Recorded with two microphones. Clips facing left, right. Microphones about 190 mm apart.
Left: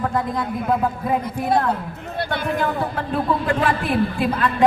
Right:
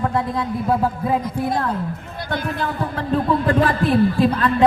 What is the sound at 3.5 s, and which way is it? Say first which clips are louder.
A man's voice: right 3 dB; 35° right (ahead or behind).